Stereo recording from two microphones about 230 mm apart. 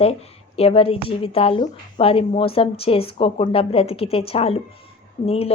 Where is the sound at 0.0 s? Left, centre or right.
Left.